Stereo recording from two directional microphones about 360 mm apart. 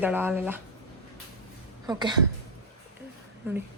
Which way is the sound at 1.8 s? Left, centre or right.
Centre.